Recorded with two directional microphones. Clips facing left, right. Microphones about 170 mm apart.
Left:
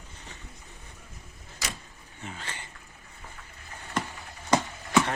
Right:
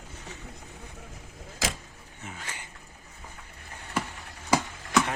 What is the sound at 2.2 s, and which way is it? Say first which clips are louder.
Speech: left 1 dB; 10° right (ahead or behind).